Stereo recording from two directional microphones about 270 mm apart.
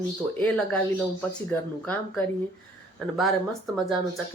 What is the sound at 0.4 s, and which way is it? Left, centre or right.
Speech, centre.